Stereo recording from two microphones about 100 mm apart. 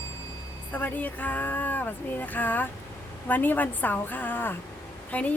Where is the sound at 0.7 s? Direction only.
15° left (ahead or behind).